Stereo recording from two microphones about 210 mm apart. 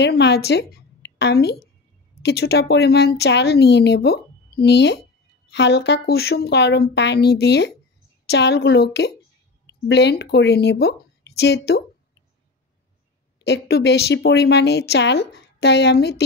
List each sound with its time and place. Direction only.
0.0 s a woman's voice: 50° left (ahead or behind)
13.4 s a woman's voice: 50° left (ahead or behind)